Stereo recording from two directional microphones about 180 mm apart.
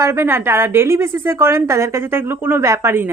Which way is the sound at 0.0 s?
15° right (ahead or behind).